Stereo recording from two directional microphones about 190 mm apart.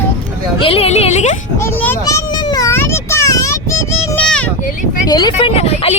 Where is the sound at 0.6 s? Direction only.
30° left (ahead or behind).